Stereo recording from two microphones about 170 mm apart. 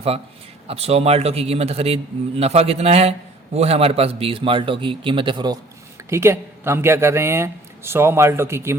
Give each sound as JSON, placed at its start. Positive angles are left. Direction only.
{"t": 0.7, "sound": "a man's voice", "side_deg": -35}
{"t": 6.1, "sound": "speech", "side_deg": -15}